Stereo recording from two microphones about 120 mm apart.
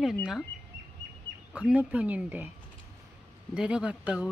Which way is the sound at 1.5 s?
10° right (ahead or behind).